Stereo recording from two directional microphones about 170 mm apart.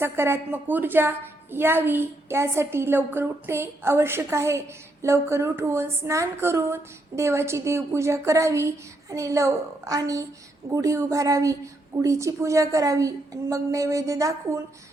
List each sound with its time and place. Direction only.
0.0 s a woman's voice: 15° right (ahead or behind)